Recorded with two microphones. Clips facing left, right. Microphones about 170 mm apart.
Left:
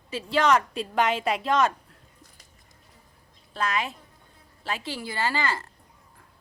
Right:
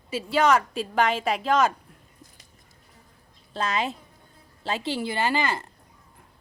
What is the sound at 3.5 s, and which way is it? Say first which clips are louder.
A woman's voice: right 1 dB; 25° right (ahead or behind).